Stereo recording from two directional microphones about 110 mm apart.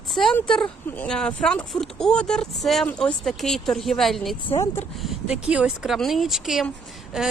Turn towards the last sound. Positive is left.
turn(degrees=-5)  # may be behind; listen again after turning